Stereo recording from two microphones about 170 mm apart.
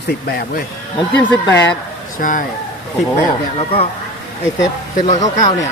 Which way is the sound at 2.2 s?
50° left (ahead or behind).